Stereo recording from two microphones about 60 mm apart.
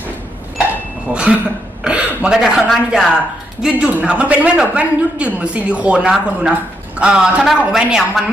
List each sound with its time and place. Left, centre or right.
1.1 s a woman's voice: centre
3.6 s a woman's voice: centre